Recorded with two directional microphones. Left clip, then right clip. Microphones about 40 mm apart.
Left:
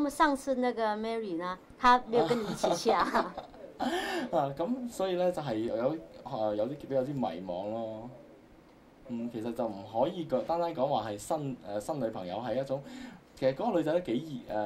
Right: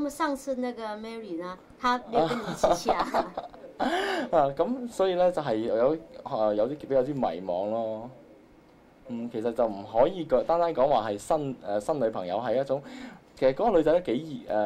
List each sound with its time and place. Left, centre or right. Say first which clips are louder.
0.0 s a woman's voice: left 2 dB; left
2.1 s a man's voice: right 2 dB; right
2.5 s a woman's voice: right 5 dB; left
3.3 s a man's voice: right 6 dB; right
9.1 s a man's voice: right 7 dB; right